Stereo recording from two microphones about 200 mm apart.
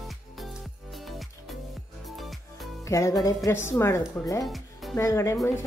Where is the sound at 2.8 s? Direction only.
15° left (ahead or behind).